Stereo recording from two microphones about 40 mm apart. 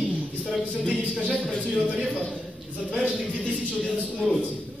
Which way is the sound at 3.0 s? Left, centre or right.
Left.